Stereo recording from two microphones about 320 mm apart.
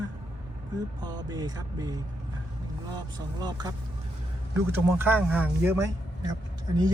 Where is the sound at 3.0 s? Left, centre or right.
Centre.